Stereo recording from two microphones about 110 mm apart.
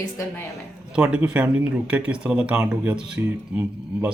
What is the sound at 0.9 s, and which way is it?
Speech, 10° right (ahead or behind).